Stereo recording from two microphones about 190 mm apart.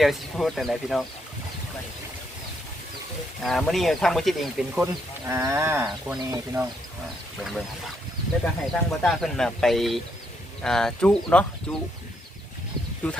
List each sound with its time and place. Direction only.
0.0 s speech: centre (ahead or behind)
3.4 s speech: centre (ahead or behind)
5.2 s speech: 15° right (ahead or behind)
8.7 s speech: 5° left (ahead or behind)